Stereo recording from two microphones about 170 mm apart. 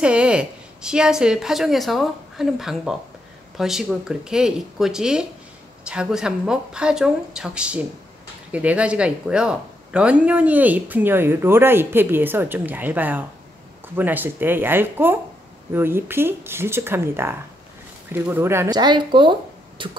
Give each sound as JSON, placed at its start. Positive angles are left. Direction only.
{"t": 0.0, "sound": "a woman's voice", "side_deg": -5}